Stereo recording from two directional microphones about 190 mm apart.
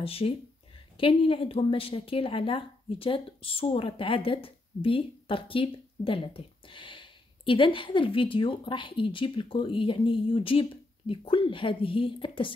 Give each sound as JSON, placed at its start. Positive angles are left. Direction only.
{"t": 0.0, "sound": "a woman's voice", "side_deg": 30}